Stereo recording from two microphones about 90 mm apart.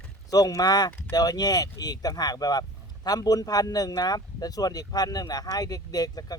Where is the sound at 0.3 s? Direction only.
45° left (ahead or behind).